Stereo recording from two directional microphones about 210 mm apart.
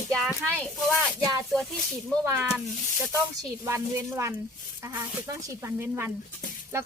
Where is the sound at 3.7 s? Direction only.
10° right (ahead or behind).